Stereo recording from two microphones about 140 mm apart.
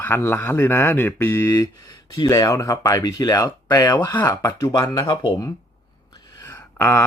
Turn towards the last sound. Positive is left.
turn(degrees=15)  # may be behind; listen again after turning